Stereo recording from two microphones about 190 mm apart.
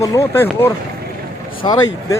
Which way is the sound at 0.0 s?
15° left (ahead or behind).